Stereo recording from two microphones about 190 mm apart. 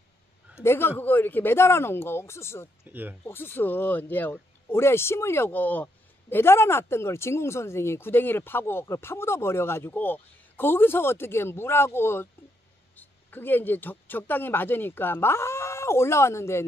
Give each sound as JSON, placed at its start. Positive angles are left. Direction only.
{"t": 0.6, "sound": "speech", "side_deg": 10}
{"t": 2.8, "sound": "speech", "side_deg": -10}
{"t": 3.3, "sound": "a man's voice", "side_deg": 10}